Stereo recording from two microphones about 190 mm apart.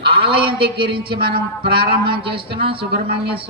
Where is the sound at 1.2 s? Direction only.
55° right (ahead or behind).